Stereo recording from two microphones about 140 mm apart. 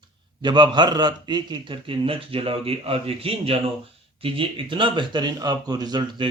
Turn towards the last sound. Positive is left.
turn(degrees=-30)  # may be behind; listen again after turning